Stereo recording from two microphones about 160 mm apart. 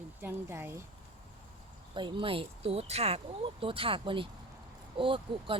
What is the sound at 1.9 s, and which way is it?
Speech, 30° right (ahead or behind).